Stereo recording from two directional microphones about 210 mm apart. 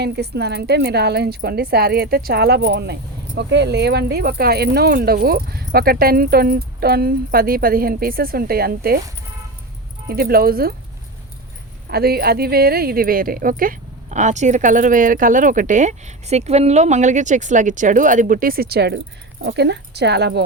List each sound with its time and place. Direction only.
0.0 s a woman's voice: 50° right (ahead or behind)
10.1 s a woman's voice: 45° right (ahead or behind)
11.9 s a woman's voice: 45° right (ahead or behind)